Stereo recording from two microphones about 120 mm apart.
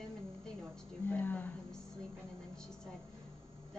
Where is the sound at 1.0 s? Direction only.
15° left (ahead or behind).